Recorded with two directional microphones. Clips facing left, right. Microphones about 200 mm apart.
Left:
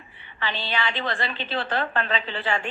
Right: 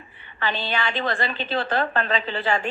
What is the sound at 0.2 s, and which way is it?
A woman's voice, 45° right (ahead or behind).